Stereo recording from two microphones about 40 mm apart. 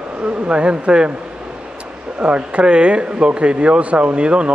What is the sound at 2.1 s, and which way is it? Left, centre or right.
Speech, right.